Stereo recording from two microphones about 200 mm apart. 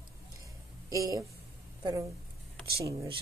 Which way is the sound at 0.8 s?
15° right (ahead or behind).